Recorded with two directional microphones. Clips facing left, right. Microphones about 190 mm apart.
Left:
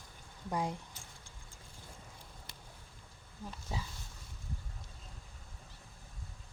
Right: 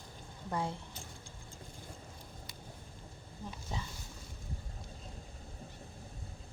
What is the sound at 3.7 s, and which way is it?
Speech, 10° left (ahead or behind).